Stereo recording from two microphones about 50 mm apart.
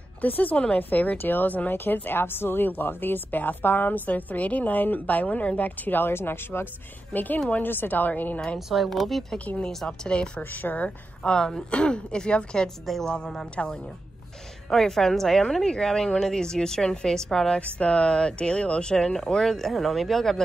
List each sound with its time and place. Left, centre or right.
0.2 s a woman's voice: left
7.1 s speech: left
7.3 s speech: left
7.6 s a woman's voice: left
8.5 s a woman's voice: centre
10.4 s a woman's voice: left
11.2 s a woman's voice: centre
12.6 s a woman's voice: centre
14.7 s a woman's voice: centre
17.6 s a woman's voice: left; by 20.3 s centre